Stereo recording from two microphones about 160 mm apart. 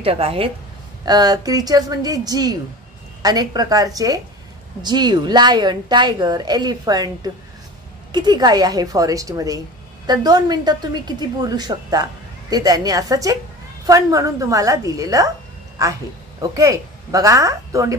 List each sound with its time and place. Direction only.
0.0 s a woman's voice: 35° right (ahead or behind)
1.0 s a woman's voice: 25° right (ahead or behind)
8.1 s a woman's voice: 25° right (ahead or behind)